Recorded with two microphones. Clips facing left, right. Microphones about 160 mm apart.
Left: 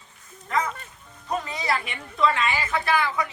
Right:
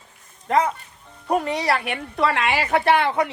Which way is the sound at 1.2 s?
65° right (ahead or behind).